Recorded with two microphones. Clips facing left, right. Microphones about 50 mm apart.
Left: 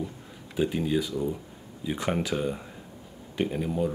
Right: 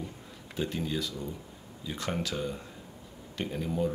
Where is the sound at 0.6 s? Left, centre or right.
Centre.